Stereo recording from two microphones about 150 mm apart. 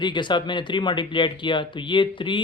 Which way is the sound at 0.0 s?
30° left (ahead or behind).